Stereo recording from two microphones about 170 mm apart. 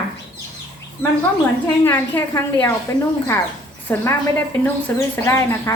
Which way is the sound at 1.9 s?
10° left (ahead or behind).